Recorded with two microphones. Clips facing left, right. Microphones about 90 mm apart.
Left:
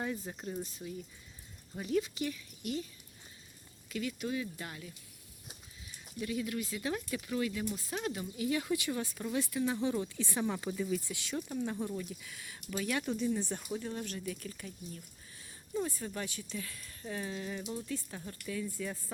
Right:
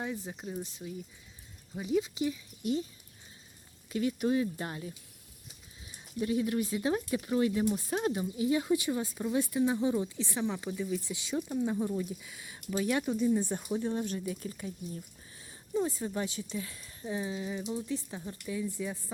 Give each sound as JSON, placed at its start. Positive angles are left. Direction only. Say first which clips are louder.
{"t": 0.0, "sound": "speech", "louder": "right 1 dB", "side_deg": -5}
{"t": 2.0, "sound": "speech", "louder": "right 3 dB", "side_deg": -20}
{"t": 3.8, "sound": "speech", "louder": "right 7 dB", "side_deg": -30}
{"t": 6.1, "sound": "speech", "louder": "right 6 dB", "side_deg": -30}
{"t": 10.2, "sound": "speech", "louder": "right 1 dB", "side_deg": 5}
{"t": 13.1, "sound": "speech", "louder": "right 5 dB", "side_deg": -10}
{"t": 13.6, "sound": "speech", "louder": "right 6 dB", "side_deg": -25}